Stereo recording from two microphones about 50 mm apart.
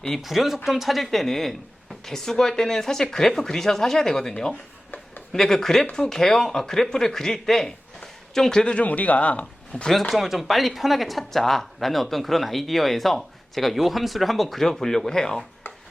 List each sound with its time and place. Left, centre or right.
0.2 s speech: centre
8.6 s a man's voice: left
9.9 s speech: centre